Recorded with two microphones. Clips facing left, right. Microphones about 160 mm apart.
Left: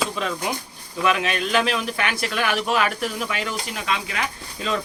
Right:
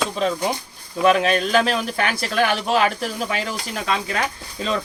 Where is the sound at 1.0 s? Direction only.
35° right (ahead or behind).